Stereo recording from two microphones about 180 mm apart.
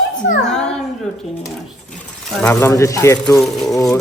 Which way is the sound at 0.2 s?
90° left.